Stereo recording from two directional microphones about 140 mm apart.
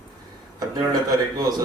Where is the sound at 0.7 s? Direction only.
30° right (ahead or behind).